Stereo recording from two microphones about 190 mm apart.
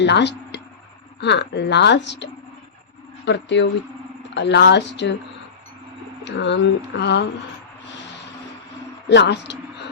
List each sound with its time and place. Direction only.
0.0 s speech: 65° left (ahead or behind)
6.2 s speech: 70° left (ahead or behind)
9.0 s speech: 65° left (ahead or behind)